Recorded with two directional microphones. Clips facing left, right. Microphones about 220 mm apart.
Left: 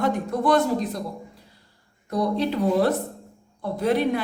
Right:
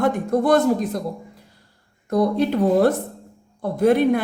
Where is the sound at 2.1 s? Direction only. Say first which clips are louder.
Right 5 dB; 50° right (ahead or behind).